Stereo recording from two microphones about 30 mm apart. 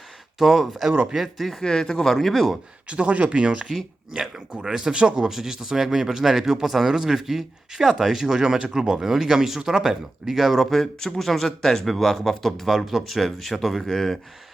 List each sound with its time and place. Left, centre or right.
0.3 s speech: centre
1.6 s speech: centre
2.8 s speech: right
4.1 s speech: centre
4.9 s speech: right; by 10.7 s centre
10.7 s speech: centre
13.9 s speech: centre